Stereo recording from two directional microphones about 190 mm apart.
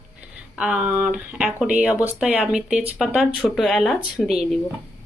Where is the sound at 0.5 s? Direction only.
5° right (ahead or behind).